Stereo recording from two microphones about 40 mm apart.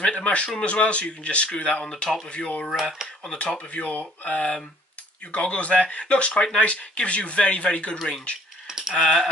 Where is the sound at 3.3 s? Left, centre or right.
Left.